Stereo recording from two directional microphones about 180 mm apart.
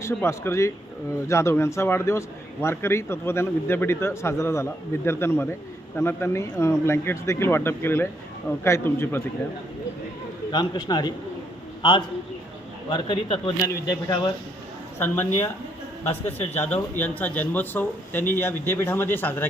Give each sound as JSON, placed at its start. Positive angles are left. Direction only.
{"t": 0.0, "sound": "a man's voice", "side_deg": 15}
{"t": 10.5, "sound": "a man's voice", "side_deg": 25}
{"t": 14.9, "sound": "a man's voice", "side_deg": 10}
{"t": 16.6, "sound": "a man's voice", "side_deg": 10}